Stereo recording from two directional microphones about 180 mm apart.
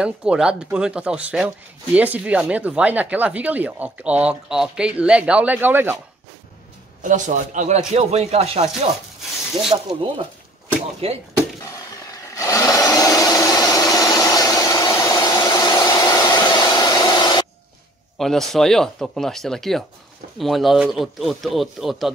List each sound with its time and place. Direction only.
0.0 s speech: 5° right (ahead or behind)
7.0 s speech: 45° right (ahead or behind)
9.7 s speech: 30° right (ahead or behind)
12.4 s sewing machine: 15° left (ahead or behind)
18.1 s speech: centre (ahead or behind)